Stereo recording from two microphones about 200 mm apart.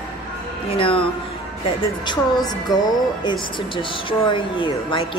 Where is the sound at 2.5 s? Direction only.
20° left (ahead or behind).